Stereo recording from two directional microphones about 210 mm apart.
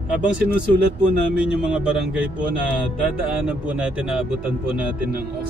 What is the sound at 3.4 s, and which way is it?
Speech, 5° right (ahead or behind).